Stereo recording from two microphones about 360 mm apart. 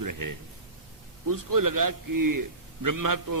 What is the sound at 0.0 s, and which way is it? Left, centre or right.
A man's voice, right.